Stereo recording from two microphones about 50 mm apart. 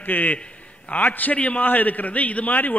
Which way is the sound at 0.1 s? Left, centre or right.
Left.